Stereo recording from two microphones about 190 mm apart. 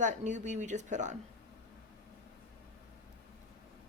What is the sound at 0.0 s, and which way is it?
A woman's voice, 40° right (ahead or behind).